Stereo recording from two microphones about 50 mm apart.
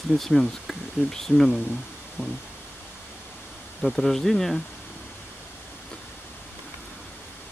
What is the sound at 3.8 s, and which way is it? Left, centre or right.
Speech, centre.